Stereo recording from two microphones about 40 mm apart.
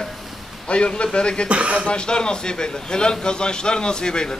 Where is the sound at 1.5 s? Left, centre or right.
Right.